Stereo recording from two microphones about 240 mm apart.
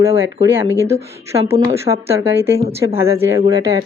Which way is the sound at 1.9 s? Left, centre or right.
Right.